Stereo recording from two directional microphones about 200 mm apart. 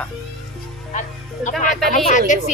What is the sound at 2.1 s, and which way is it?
Speech, 40° left (ahead or behind).